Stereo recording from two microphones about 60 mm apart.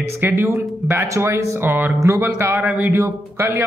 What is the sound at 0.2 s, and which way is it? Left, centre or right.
Speech, right.